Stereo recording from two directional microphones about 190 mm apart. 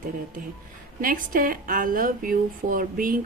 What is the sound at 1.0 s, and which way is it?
Speech, 45° right (ahead or behind).